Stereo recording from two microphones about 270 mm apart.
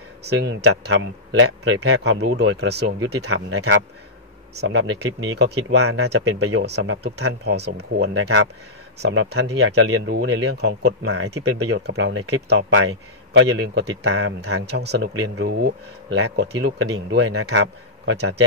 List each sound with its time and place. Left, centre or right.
0.3 s speech: right
3.3 s speech: right
6.6 s speech: right
8.1 s speech: right
10.6 s speech: right
12.4 s speech: right
15.1 s speech: right
15.4 s speech: right